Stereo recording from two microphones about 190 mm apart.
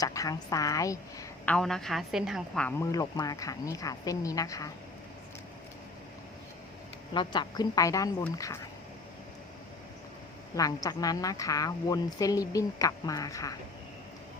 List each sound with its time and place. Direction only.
0.0 s a woman's voice: 20° left (ahead or behind)
1.5 s a woman's voice: 5° left (ahead or behind)
7.1 s a woman's voice: 25° left (ahead or behind)
10.5 s a woman's voice: 20° left (ahead or behind)